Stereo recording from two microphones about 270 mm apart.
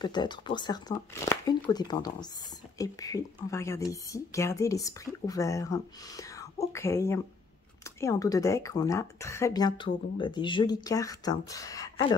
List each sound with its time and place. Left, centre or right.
0.0 s speech: centre